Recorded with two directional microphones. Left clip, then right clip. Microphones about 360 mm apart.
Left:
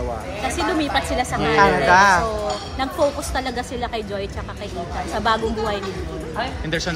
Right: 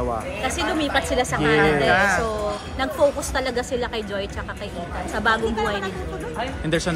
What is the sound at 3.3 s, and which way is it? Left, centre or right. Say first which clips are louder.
A woman's voice: right 1 dB; centre.